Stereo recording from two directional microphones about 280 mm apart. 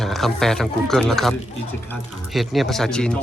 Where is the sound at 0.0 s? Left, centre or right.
Centre.